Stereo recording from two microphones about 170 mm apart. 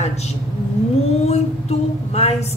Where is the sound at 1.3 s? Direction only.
40° left (ahead or behind).